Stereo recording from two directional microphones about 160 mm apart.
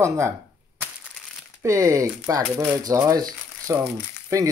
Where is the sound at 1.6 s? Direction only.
20° right (ahead or behind).